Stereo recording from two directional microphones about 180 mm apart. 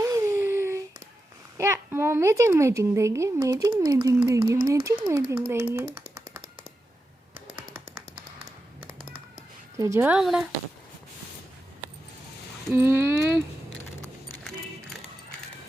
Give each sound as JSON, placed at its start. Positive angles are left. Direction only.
{"t": 0.0, "sound": "a sound", "side_deg": -15}
{"t": 1.5, "sound": "a child's voice", "side_deg": -15}
{"t": 9.7, "sound": "a child's voice", "side_deg": -15}
{"t": 12.7, "sound": "a child's voice", "side_deg": -15}